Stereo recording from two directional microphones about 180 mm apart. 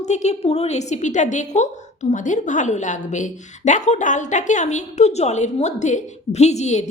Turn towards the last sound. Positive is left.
turn(degrees=40)  # may be behind; listen again after turning